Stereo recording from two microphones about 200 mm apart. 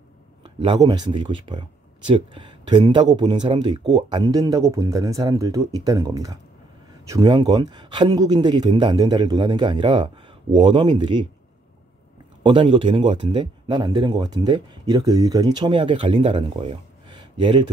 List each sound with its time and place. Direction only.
0.4 s a man's voice: 25° right (ahead or behind)
12.4 s a man's voice: 25° right (ahead or behind)